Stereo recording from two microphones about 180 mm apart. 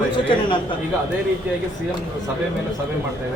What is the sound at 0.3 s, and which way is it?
Speech, 30° left (ahead or behind).